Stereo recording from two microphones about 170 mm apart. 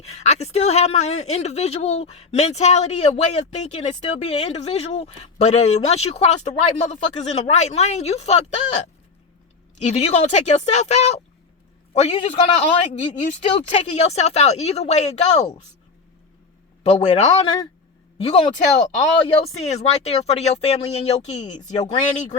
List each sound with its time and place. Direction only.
0.1 s speech: 40° left (ahead or behind)
9.7 s speech: 40° left (ahead or behind)
16.8 s speech: 40° left (ahead or behind)